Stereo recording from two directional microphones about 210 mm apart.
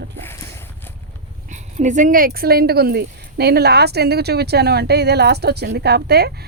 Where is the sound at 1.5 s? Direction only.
35° right (ahead or behind).